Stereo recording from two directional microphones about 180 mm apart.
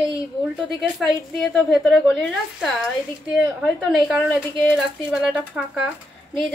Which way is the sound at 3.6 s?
Centre (ahead or behind).